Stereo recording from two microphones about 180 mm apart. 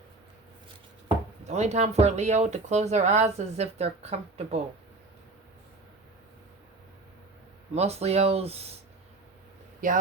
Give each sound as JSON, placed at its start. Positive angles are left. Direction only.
{"t": 1.0, "sound": "speech", "side_deg": -40}
{"t": 7.8, "sound": "speech", "side_deg": -35}
{"t": 9.8, "sound": "a man's voice", "side_deg": -45}